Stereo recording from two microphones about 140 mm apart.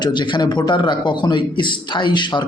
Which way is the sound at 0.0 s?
35° left (ahead or behind).